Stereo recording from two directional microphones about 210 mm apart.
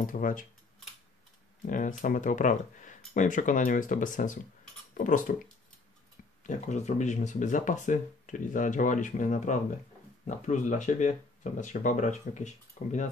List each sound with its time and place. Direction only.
0.0 s speech: 40° left (ahead or behind)
1.7 s speech: 40° left (ahead or behind)
6.4 s speech: 35° left (ahead or behind)